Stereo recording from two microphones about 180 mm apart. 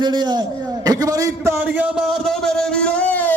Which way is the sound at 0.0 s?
25° right (ahead or behind).